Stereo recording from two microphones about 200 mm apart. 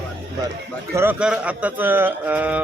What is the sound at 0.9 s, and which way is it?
Speech, 10° right (ahead or behind).